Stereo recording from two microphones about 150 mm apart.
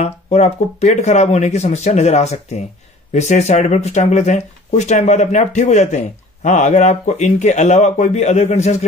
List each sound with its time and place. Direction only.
0.0 s speech: 45° left (ahead or behind)